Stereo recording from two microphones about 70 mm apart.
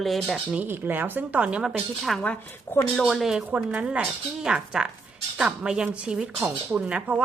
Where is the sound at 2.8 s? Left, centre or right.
Centre.